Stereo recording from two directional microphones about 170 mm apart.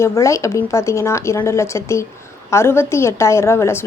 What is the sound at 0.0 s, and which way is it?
A woman's voice, 15° left (ahead or behind).